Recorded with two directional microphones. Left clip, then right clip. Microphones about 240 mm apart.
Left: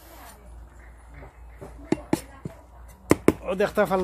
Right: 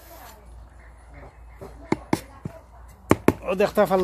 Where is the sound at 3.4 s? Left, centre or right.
Right.